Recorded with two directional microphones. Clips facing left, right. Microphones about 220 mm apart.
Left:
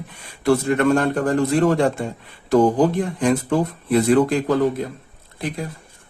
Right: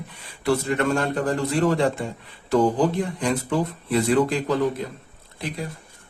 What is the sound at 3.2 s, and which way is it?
Speech, 55° left (ahead or behind).